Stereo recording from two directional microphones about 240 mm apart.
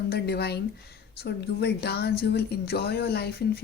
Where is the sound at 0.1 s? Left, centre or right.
Left.